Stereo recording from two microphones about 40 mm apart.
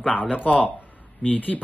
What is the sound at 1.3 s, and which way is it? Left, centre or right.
Speech, left.